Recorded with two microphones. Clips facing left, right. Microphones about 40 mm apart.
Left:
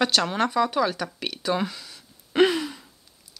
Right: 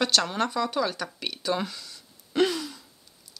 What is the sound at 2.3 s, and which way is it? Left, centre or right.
Gasp, left.